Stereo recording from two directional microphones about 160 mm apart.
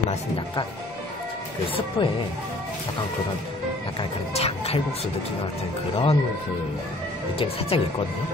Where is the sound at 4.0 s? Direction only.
40° left (ahead or behind).